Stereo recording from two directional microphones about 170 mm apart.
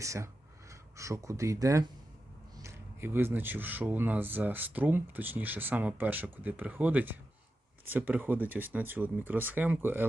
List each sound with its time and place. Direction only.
0.0 s speech: 20° right (ahead or behind)